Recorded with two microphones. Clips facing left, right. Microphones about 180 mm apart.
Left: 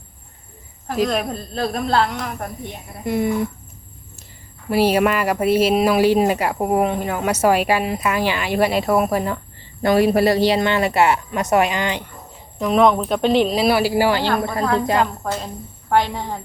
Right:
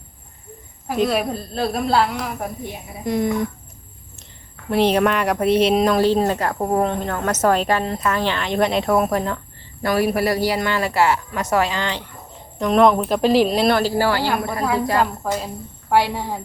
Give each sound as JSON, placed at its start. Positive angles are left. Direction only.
{"t": 0.9, "sound": "a woman's voice", "side_deg": -5}
{"t": 4.7, "sound": "speech", "side_deg": 5}
{"t": 9.8, "sound": "a woman's voice", "side_deg": 25}
{"t": 12.5, "sound": "a woman's voice", "side_deg": 0}
{"t": 14.6, "sound": "a woman's voice", "side_deg": -10}